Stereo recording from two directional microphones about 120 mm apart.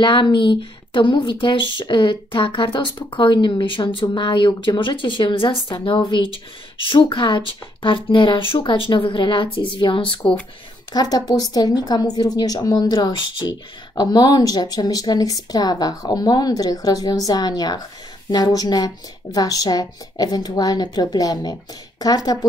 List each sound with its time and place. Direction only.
0.0 s speech: 45° left (ahead or behind)
10.9 s a woman's voice: 35° left (ahead or behind)